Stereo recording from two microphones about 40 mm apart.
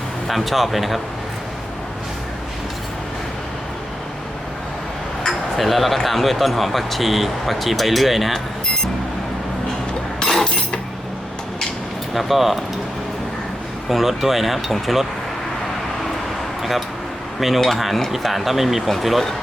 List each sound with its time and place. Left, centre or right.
0.3 s speech: centre
5.5 s speech: centre
10.2 s glass: left
12.1 s speech: centre
13.9 s speech: centre
17.6 s speech: centre